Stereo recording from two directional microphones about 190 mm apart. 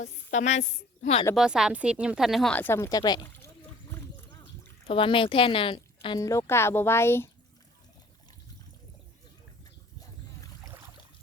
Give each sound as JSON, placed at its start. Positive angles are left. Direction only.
{"t": 0.0, "sound": "a woman's voice", "side_deg": 40}
{"t": 1.4, "sound": "speech", "side_deg": 0}
{"t": 3.9, "sound": "gargling", "side_deg": 15}
{"t": 4.9, "sound": "speech", "side_deg": 25}